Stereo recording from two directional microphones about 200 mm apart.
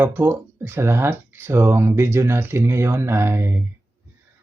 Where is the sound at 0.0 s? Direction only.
10° right (ahead or behind).